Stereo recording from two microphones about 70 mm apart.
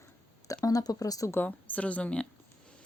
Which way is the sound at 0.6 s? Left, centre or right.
Left.